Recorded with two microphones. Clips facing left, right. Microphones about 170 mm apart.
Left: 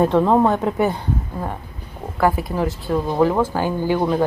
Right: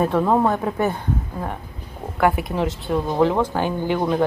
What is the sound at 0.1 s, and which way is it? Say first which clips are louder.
Speech: left 3 dB; 20° left (ahead or behind).